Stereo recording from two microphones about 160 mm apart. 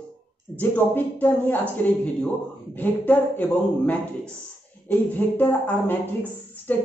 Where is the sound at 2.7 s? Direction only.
10° left (ahead or behind).